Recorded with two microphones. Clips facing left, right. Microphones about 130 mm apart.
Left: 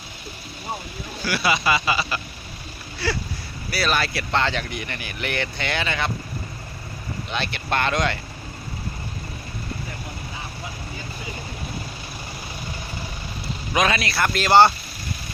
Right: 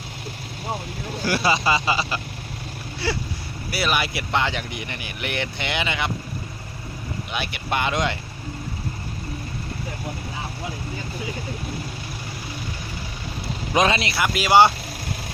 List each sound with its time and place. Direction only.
1.2 s speech: 40° right (ahead or behind); by 6.1 s 15° right (ahead or behind)
7.3 s speech: 10° right (ahead or behind)
13.7 s speech: 25° right (ahead or behind)
14.2 s speech: 10° right (ahead or behind)